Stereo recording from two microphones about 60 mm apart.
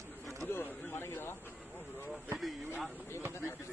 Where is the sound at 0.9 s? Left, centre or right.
Left.